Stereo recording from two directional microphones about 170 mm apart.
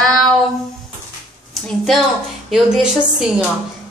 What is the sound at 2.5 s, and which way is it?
Speech, 5° right (ahead or behind).